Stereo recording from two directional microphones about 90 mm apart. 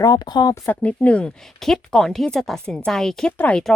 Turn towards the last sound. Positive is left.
turn(degrees=15)  # may be behind; listen again after turning